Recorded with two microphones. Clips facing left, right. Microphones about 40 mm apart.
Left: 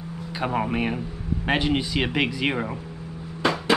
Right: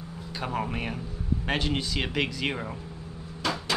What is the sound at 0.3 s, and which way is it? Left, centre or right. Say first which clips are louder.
Speech: left 6 dB; centre.